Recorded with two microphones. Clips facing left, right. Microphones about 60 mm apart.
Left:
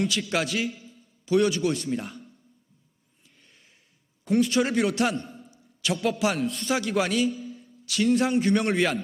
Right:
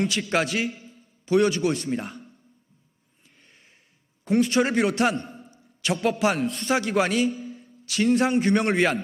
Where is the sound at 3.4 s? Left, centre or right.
Right.